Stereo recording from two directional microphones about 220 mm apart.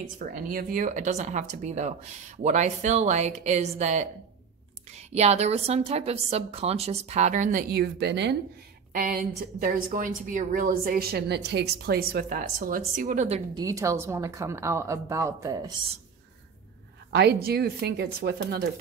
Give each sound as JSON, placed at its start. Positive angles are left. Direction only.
{"t": 0.2, "sound": "a woman's voice", "side_deg": -40}
{"t": 5.1, "sound": "a woman's voice", "side_deg": -30}
{"t": 7.7, "sound": "speech", "side_deg": -50}
{"t": 8.9, "sound": "a woman's voice", "side_deg": -40}
{"t": 13.6, "sound": "speech", "side_deg": -15}
{"t": 17.1, "sound": "speech", "side_deg": -50}